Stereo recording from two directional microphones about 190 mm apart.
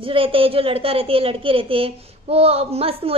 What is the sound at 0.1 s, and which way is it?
A woman's voice, 30° right (ahead or behind).